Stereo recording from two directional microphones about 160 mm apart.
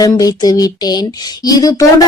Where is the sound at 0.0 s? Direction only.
25° left (ahead or behind).